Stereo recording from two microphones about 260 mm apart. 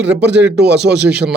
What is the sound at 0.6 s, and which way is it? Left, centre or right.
Speech, right.